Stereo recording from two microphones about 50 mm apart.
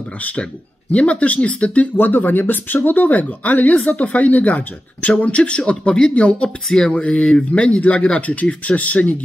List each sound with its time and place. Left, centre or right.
0.2 s speech: left
2.0 s speech: left